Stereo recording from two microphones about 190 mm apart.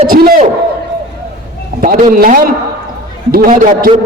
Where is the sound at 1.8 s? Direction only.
45° right (ahead or behind).